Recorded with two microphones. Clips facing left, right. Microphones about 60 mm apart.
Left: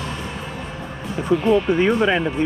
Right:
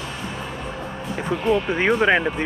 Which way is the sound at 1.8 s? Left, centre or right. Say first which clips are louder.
Left 1 dB; right.